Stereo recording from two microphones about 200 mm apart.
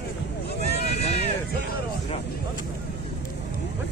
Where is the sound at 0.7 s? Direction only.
30° left (ahead or behind).